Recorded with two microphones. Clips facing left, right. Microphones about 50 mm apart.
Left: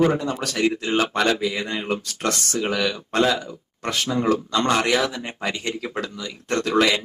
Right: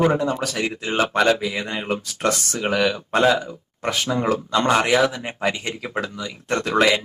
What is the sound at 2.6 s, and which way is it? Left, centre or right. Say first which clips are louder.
Speech: right 5 dB; centre.